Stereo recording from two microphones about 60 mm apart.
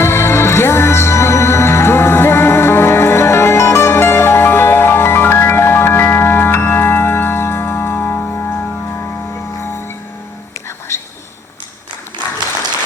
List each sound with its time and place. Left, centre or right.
0.0 s music: left